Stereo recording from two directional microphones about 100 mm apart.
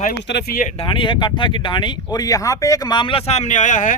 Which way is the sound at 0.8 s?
55° left (ahead or behind).